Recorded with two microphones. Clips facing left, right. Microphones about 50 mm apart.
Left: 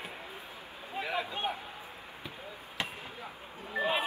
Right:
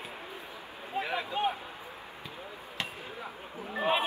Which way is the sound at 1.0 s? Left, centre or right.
Right.